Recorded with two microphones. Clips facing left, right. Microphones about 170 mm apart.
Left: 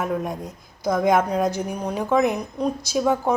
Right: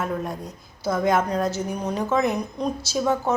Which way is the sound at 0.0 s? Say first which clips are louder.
Left 2 dB; 5° left (ahead or behind).